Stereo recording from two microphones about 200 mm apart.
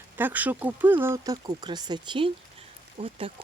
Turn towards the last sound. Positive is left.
turn(degrees=-25)  # may be behind; listen again after turning